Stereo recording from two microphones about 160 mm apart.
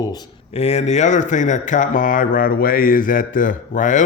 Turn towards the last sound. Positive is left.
turn(degrees=55)  # may be behind; listen again after turning